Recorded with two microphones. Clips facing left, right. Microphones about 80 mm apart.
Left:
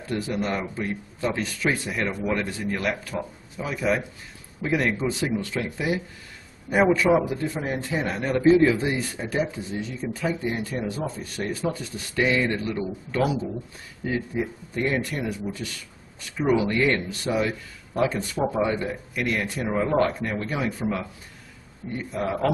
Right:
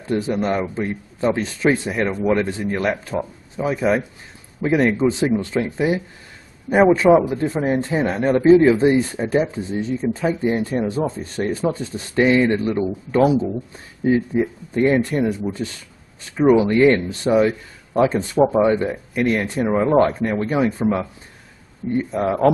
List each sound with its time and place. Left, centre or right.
0.2 s a man's voice: right